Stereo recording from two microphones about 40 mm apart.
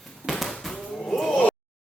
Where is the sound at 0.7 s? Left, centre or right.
Centre.